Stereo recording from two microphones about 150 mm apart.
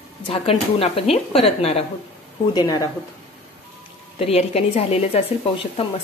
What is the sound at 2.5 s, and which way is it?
Speech, 25° left (ahead or behind).